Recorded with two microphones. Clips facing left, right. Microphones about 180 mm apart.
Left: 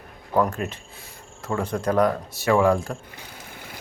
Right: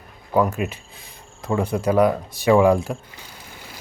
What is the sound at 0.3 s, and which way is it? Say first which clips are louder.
Speech: right 2 dB; 10° right (ahead or behind).